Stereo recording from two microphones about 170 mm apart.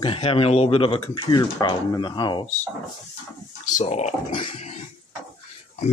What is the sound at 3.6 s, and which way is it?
Speech, 45° left (ahead or behind).